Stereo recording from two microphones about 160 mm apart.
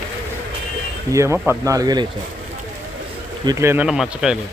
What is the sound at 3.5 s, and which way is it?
Speech, 15° right (ahead or behind).